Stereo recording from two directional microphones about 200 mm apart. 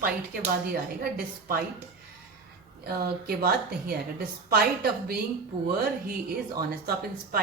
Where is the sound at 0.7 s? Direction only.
50° right (ahead or behind).